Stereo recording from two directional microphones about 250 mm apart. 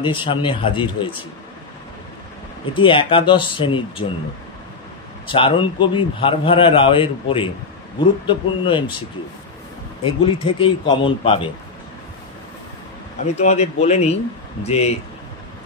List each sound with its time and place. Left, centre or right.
0.0 s a man's voice: centre
2.6 s a man's voice: centre
5.2 s a man's voice: left
10.0 s a man's voice: left
13.2 s a man's voice: left